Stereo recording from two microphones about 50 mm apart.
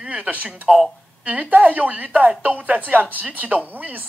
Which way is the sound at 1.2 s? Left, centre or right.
Right.